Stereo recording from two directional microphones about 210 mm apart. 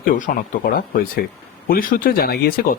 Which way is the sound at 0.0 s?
40° left (ahead or behind).